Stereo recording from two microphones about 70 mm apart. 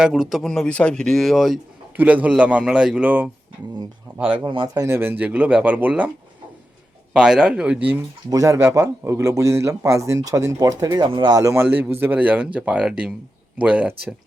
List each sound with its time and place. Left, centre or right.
0.0 s speech: centre
0.4 s speech: centre
2.0 s speech: right
3.0 s speech: right
4.9 s speech: right
7.1 s speech: centre
8.3 s speech: right
8.5 s speech: right
10.9 s speech: right
11.5 s speech: right